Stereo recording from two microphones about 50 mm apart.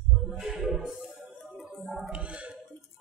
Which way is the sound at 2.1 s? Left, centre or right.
Right.